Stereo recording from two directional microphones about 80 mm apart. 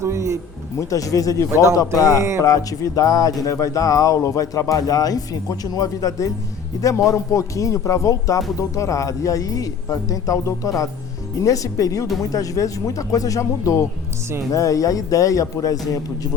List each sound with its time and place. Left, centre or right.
0.0 s speech: right
0.8 s speech: left